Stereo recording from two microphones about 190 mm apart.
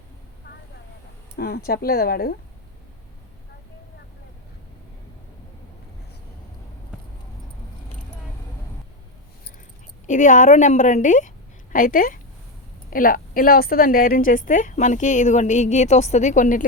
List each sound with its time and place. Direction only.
1.4 s speech: 55° left (ahead or behind)
10.1 s a woman's voice: 40° left (ahead or behind)